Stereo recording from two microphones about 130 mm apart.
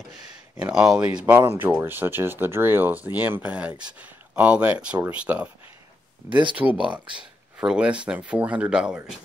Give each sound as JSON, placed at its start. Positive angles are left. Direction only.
{"t": 0.6, "sound": "speech", "side_deg": -10}
{"t": 1.2, "sound": "speech", "side_deg": -15}
{"t": 6.2, "sound": "speech", "side_deg": -40}
{"t": 6.5, "sound": "speech", "side_deg": -10}
{"t": 6.8, "sound": "speech", "side_deg": -40}
{"t": 7.5, "sound": "speech", "side_deg": -5}